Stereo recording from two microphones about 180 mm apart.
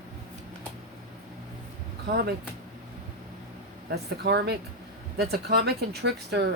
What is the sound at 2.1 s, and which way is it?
Speech, 65° right (ahead or behind).